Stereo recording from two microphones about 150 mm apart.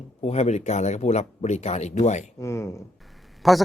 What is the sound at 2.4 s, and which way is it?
Speech, 20° left (ahead or behind).